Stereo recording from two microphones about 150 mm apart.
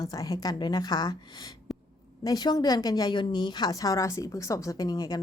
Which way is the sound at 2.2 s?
25° left (ahead or behind).